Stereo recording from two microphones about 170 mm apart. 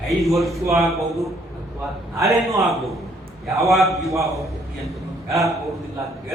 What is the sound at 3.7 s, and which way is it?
Speech, centre (ahead or behind).